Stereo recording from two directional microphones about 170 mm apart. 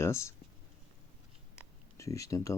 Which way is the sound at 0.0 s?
15° left (ahead or behind).